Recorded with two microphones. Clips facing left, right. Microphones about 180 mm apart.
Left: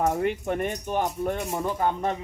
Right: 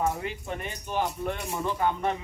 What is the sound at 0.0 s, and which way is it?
Speech, 50° left (ahead or behind).